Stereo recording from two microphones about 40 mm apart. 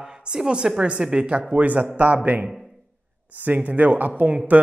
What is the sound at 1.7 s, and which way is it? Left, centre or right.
Speech, right.